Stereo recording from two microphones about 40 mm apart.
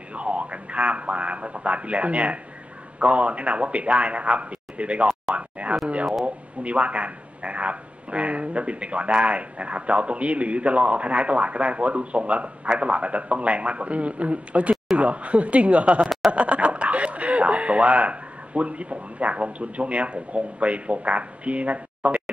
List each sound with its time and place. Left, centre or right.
0.1 s a man's voice: right